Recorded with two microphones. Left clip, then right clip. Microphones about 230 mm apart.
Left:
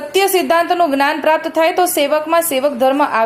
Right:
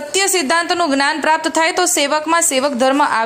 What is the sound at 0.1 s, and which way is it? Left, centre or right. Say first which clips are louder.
Speech: left 3 dB; right.